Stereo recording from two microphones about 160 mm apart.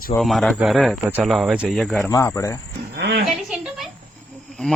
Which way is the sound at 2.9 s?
90° right.